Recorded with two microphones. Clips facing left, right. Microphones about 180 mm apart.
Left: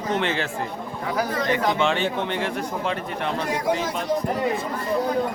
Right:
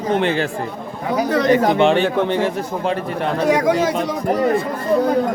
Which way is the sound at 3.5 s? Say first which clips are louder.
Right 10 dB; 90° right.